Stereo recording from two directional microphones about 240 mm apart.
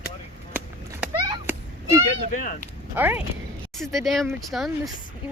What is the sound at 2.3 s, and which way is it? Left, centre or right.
Speech, left.